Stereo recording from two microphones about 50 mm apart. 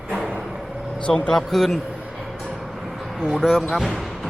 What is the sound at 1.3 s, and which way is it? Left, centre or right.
Speech, centre.